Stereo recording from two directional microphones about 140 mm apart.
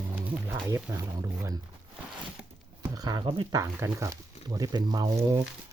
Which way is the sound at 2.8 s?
30° right (ahead or behind).